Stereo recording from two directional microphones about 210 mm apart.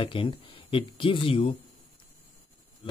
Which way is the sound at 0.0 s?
25° left (ahead or behind).